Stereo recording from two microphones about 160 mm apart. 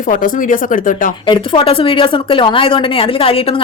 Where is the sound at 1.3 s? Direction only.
30° left (ahead or behind).